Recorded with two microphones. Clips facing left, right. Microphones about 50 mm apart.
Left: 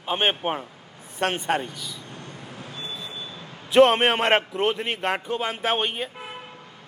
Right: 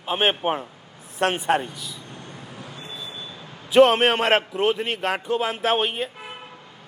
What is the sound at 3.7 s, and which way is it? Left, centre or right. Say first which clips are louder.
A man's voice: right 1 dB; centre.